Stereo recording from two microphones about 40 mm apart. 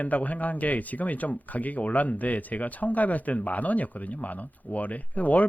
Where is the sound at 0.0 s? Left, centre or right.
Left.